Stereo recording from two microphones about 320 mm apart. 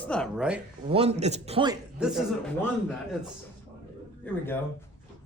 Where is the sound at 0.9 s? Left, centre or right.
Centre.